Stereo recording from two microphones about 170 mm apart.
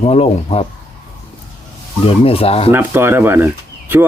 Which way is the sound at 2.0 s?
35° left (ahead or behind).